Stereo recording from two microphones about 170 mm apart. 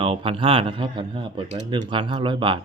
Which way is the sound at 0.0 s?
30° right (ahead or behind).